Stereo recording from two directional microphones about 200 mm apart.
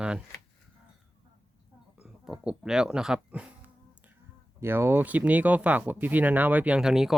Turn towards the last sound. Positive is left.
turn(degrees=0)  # may be behind; listen again after turning